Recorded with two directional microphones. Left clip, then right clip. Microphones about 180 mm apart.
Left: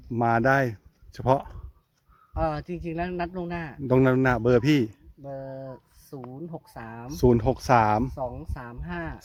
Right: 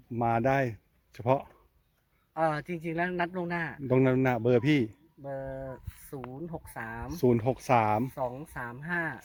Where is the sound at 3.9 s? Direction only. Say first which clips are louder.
Left 5 dB; 20° left (ahead or behind).